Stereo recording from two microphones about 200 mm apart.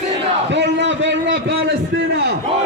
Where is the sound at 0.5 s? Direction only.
65° right (ahead or behind).